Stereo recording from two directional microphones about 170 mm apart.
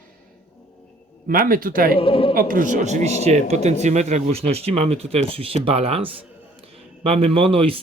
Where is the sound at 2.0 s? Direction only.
30° left (ahead or behind).